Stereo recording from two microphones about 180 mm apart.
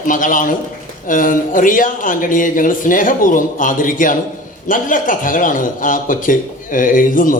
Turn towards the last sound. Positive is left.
turn(degrees=50)  # may be behind; listen again after turning